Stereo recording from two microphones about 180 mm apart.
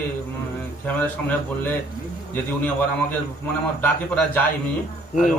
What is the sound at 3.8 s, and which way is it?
Speech, 10° left (ahead or behind).